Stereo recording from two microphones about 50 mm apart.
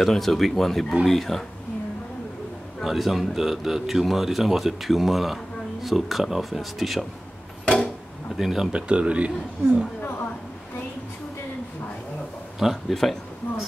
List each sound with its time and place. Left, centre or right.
0.0 s speech: centre
2.8 s speech: centre
7.6 s music: left
8.4 s speech: centre
8.7 s speech: right
12.6 s speech: centre
12.9 s speech: centre